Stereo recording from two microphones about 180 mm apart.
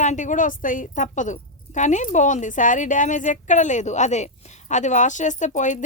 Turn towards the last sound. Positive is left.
turn(degrees=45)  # may be behind; listen again after turning